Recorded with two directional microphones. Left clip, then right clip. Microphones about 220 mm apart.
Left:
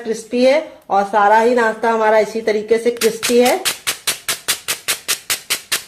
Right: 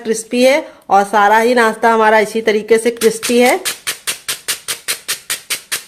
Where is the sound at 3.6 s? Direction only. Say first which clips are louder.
Left 1 dB; 10° left (ahead or behind).